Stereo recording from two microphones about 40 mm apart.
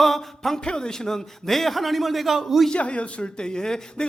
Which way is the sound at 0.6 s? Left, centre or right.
Centre.